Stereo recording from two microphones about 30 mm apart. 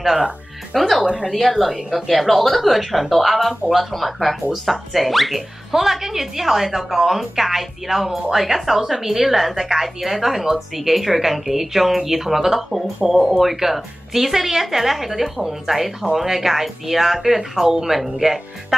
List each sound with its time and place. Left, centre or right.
0.7 s a woman's voice: centre
1.0 s speech: right
1.3 s a woman's voice: centre
13.0 s a woman's voice: centre
17.9 s a woman's voice: centre